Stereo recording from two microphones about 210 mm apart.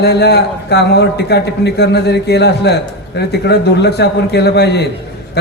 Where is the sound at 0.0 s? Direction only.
50° left (ahead or behind).